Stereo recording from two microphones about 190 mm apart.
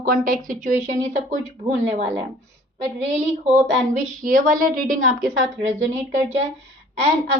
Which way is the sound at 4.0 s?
40° right (ahead or behind).